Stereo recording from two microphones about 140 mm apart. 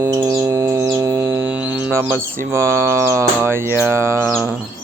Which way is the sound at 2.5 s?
20° right (ahead or behind).